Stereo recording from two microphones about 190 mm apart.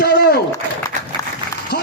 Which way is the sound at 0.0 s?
60° left (ahead or behind).